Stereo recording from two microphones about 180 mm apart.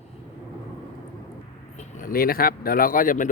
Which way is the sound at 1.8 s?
50° left (ahead or behind).